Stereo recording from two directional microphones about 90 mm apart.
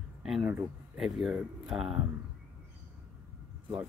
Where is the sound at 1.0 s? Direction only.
5° right (ahead or behind).